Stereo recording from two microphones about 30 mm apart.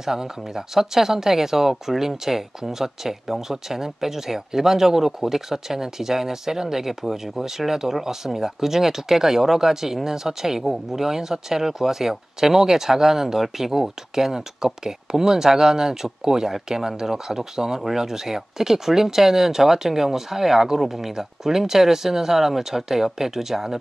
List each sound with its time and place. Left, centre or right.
0.0 s speech: centre